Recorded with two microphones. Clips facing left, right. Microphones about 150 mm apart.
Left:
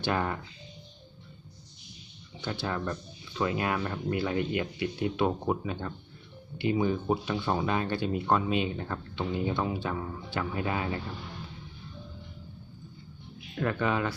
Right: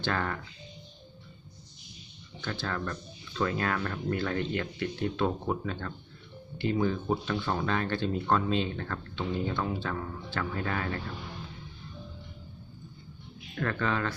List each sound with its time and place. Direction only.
0.0 s speech: 15° left (ahead or behind)
2.4 s speech: 15° left (ahead or behind)
13.6 s speech: 15° left (ahead or behind)